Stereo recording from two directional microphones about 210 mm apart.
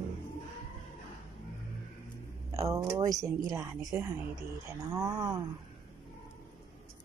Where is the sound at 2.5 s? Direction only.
15° right (ahead or behind).